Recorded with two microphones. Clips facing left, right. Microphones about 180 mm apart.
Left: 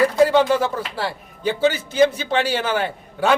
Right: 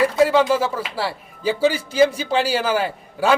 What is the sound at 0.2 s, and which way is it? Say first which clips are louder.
A man's voice: even; centre (ahead or behind).